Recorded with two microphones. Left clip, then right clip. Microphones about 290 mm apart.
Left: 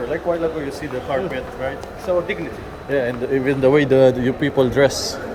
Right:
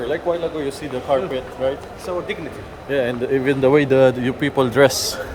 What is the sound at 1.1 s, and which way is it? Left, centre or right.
Speech, centre.